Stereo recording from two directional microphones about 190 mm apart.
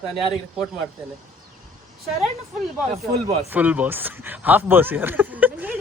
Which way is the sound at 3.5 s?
10° right (ahead or behind).